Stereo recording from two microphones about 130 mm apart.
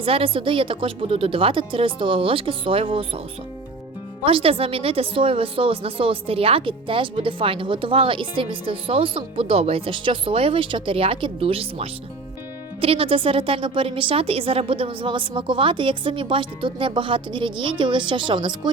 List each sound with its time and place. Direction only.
0.0 s speech: 45° right (ahead or behind)
4.3 s a woman's voice: 45° right (ahead or behind)